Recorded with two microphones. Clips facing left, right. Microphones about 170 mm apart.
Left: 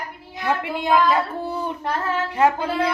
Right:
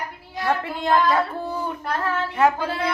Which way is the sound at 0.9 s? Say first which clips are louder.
Left 1 dB; 5° left (ahead or behind).